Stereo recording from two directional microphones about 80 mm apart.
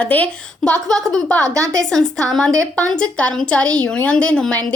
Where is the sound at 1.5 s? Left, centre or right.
Right.